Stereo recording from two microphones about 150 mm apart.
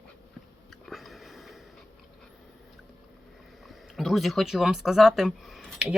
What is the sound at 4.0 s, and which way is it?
Speech, centre (ahead or behind).